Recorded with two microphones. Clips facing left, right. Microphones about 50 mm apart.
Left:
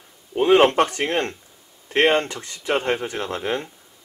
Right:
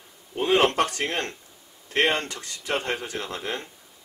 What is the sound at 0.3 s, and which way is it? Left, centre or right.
A man's voice, left.